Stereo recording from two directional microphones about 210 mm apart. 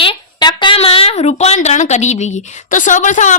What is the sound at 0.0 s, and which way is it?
A woman's voice, 20° left (ahead or behind).